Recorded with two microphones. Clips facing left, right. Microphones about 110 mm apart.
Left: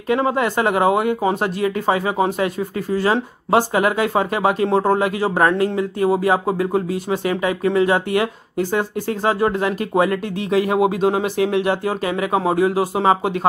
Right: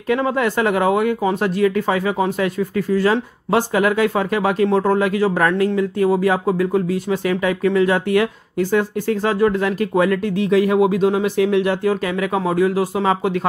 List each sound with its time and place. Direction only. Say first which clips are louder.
0.1 s speech: even; 20° left (ahead or behind)
4.6 s speech: even; 25° left (ahead or behind)
10.9 s speech: right 1 dB; 50° left (ahead or behind)
11.6 s speech: right 1 dB; 20° left (ahead or behind)